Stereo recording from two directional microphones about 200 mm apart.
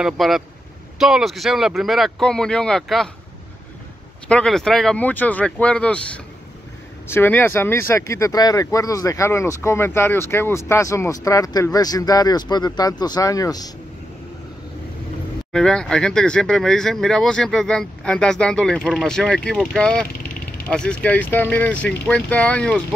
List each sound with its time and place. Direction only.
0.0 s speech: centre (ahead or behind)
4.3 s speech: 5° left (ahead or behind)
15.5 s speech: 5° left (ahead or behind)